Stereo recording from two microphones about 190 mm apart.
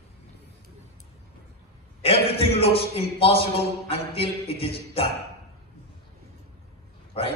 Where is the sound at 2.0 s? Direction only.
30° left (ahead or behind).